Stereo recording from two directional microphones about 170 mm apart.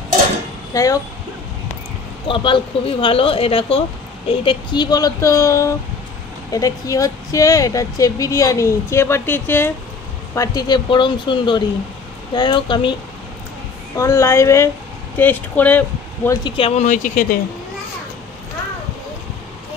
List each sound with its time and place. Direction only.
0.7 s speech: 20° left (ahead or behind)
2.2 s speech: 30° left (ahead or behind)
13.9 s a woman's voice: 15° left (ahead or behind)
16.3 s speech: 30° left (ahead or behind)
16.8 s speech: 50° left (ahead or behind)